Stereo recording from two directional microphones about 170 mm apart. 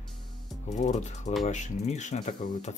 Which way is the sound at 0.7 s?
45° left (ahead or behind).